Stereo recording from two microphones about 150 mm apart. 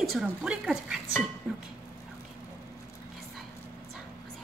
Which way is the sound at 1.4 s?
5° right (ahead or behind).